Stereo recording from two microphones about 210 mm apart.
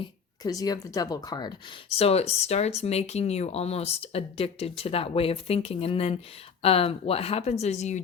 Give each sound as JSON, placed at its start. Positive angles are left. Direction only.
{"t": 0.4, "sound": "speech", "side_deg": 15}
{"t": 2.0, "sound": "speech", "side_deg": 30}